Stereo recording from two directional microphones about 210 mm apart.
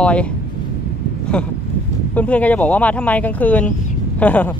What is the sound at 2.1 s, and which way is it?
Speech, 5° left (ahead or behind).